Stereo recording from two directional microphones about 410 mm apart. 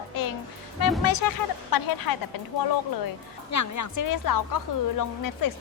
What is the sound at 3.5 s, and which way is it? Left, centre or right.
A woman's voice, left.